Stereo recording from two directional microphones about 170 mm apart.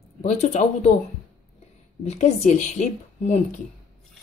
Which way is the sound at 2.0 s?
40° left (ahead or behind).